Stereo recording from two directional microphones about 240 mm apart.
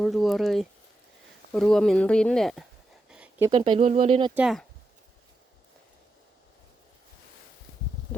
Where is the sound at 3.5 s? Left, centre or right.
Right.